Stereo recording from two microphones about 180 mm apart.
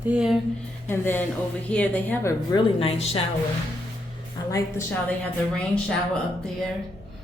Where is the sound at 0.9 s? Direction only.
10° left (ahead or behind).